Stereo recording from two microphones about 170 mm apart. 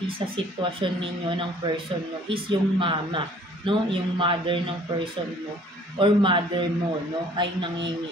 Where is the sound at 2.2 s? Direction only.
30° right (ahead or behind).